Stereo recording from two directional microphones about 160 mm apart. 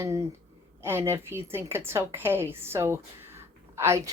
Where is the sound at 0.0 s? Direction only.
20° right (ahead or behind).